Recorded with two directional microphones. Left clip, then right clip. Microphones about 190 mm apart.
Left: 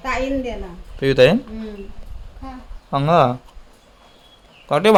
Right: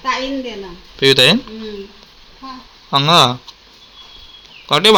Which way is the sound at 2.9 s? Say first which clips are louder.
Right 4 dB; 5° left (ahead or behind).